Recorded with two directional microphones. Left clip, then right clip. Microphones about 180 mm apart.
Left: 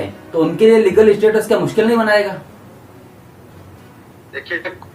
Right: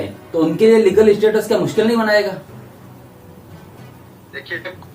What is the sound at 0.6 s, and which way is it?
Speech, centre (ahead or behind).